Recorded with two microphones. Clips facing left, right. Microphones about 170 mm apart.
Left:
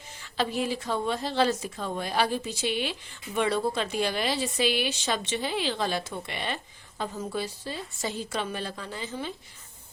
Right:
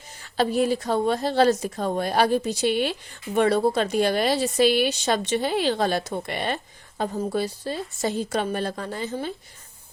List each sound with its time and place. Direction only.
0.2 s a woman's voice: 40° right (ahead or behind)